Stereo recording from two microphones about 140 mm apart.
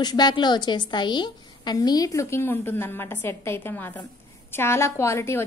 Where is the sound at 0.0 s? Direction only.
30° left (ahead or behind).